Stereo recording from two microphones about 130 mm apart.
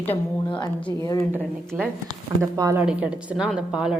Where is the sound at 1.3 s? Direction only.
15° right (ahead or behind).